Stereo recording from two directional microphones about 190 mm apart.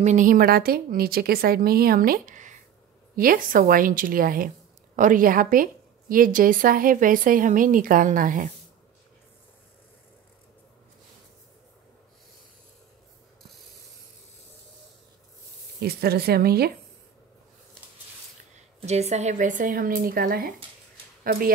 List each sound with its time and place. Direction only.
0.0 s a woman's voice: 40° right (ahead or behind)
15.8 s speech: 55° right (ahead or behind)
18.8 s a woman's voice: 35° right (ahead or behind)